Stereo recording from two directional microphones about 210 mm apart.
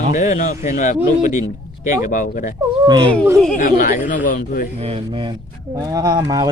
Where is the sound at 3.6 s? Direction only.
40° left (ahead or behind).